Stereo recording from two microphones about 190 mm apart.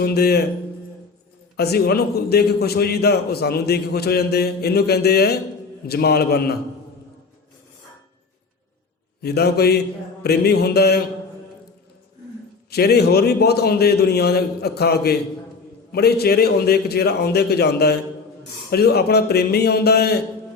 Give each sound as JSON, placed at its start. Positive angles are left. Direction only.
{"t": 0.0, "sound": "a man's voice", "side_deg": 55}
{"t": 1.5, "sound": "a man's voice", "side_deg": 55}
{"t": 9.2, "sound": "a man's voice", "side_deg": 55}
{"t": 12.7, "sound": "a man's voice", "side_deg": 55}